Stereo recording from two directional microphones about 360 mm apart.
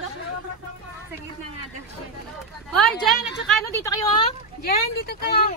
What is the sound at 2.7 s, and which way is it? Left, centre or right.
A woman's voice, centre.